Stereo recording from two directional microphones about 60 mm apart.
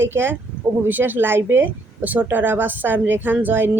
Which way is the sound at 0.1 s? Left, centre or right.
Right.